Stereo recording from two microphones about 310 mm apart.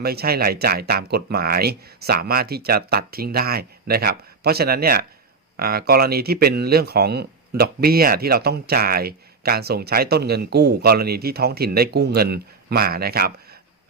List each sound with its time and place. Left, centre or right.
0.0 s speech: right